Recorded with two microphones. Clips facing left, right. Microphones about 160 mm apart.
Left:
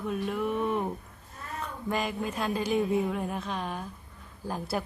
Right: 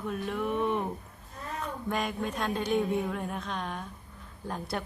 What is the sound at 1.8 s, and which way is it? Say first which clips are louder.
Speech: left 2 dB; centre (ahead or behind).